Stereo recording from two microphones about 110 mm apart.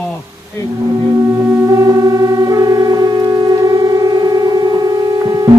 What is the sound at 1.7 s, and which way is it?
Music, 35° right (ahead or behind).